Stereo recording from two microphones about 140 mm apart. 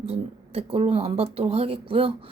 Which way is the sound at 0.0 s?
45° right (ahead or behind).